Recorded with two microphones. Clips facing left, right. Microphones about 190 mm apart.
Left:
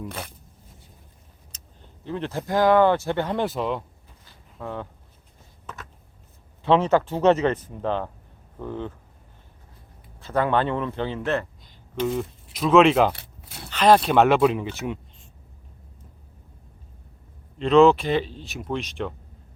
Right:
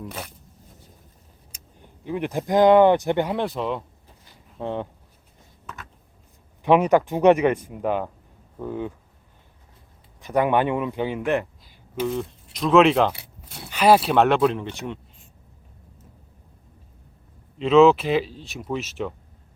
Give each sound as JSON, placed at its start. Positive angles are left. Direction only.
{"t": 0.0, "sound": "speech", "side_deg": 0}
{"t": 1.5, "sound": "speech", "side_deg": -10}
{"t": 3.3, "sound": "speech", "side_deg": 0}
{"t": 4.5, "sound": "speech", "side_deg": -25}
{"t": 6.6, "sound": "speech", "side_deg": -15}
{"t": 10.2, "sound": "a man's voice", "side_deg": -15}
{"t": 12.0, "sound": "speech", "side_deg": 5}
{"t": 13.7, "sound": "speech", "side_deg": -10}
{"t": 17.6, "sound": "speech", "side_deg": 0}